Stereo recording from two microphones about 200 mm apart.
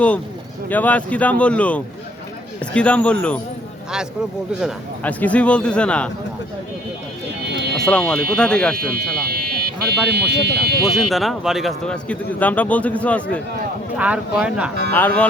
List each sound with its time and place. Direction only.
0.7 s a man's voice: 5° left (ahead or behind)
4.6 s a man's voice: 5° left (ahead or behind)
7.8 s a man's voice: 5° left (ahead or behind)
8.7 s speech: 45° right (ahead or behind)
10.9 s a man's voice: centre (ahead or behind)
13.9 s a man's voice: 5° right (ahead or behind)
14.9 s speech: 10° left (ahead or behind)